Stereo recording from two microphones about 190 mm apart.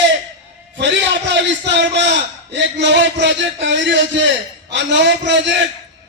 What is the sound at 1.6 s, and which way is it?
A man's voice, 65° right (ahead or behind).